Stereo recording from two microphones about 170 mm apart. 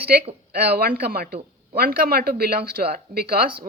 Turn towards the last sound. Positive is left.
turn(degrees=-65)  # may be behind; listen again after turning